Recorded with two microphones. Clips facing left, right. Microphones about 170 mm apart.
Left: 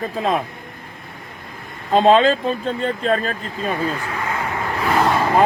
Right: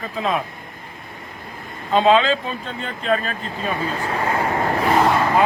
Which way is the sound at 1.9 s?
40° left (ahead or behind).